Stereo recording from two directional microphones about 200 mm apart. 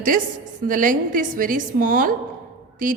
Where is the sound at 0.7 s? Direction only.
40° right (ahead or behind).